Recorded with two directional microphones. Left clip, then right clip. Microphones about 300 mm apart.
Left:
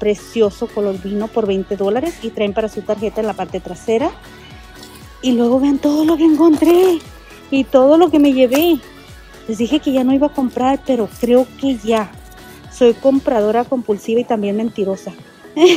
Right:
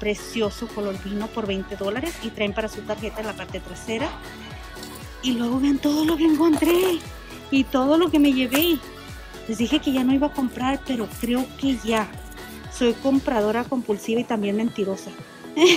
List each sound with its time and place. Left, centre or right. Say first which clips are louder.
0.0 s speech: left 10 dB; centre
5.2 s speech: left 9 dB; centre